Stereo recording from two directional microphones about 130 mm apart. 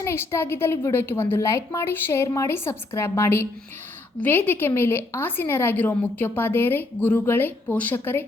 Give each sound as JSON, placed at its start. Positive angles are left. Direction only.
{"t": 0.0, "sound": "a woman's voice", "side_deg": 20}